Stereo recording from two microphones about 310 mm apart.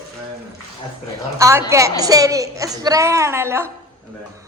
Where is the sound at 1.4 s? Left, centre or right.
Centre.